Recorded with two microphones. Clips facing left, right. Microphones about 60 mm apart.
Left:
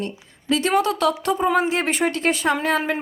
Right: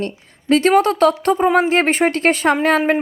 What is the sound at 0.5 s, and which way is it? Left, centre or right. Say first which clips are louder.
Speech: right 6 dB; right.